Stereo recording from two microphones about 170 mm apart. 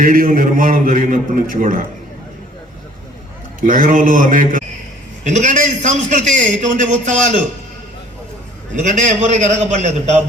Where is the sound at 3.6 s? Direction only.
50° right (ahead or behind).